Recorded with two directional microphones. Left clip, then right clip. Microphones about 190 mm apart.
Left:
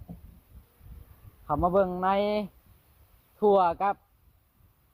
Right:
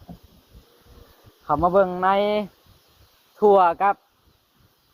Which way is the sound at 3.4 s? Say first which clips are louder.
Right 7 dB; 20° right (ahead or behind).